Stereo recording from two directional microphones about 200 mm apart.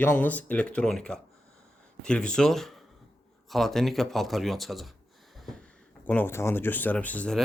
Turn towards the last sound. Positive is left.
turn(degrees=5)  # may be behind; listen again after turning